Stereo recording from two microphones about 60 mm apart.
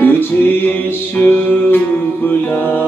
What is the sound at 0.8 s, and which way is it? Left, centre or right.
Music, left.